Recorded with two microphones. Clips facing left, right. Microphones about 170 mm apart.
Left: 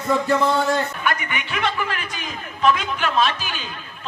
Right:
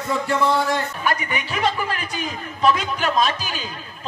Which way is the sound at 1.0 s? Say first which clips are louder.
Right 1 dB; 35° right (ahead or behind).